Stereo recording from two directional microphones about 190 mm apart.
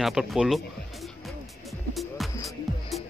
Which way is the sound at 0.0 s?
Centre (ahead or behind).